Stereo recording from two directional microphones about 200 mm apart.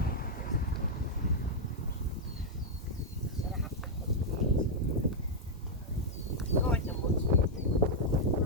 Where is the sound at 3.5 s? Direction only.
Centre (ahead or behind).